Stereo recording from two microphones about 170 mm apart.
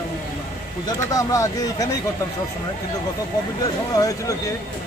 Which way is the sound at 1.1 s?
20° left (ahead or behind).